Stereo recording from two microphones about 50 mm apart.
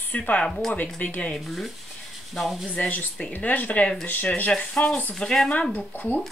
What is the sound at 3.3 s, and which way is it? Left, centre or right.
Speech, left.